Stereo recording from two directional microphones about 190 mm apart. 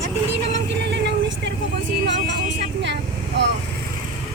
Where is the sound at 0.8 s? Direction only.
65° right (ahead or behind).